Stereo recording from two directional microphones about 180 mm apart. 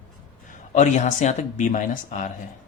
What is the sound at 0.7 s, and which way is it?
Speech, 40° left (ahead or behind).